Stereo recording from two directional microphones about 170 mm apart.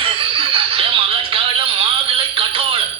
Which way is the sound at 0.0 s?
30° right (ahead or behind).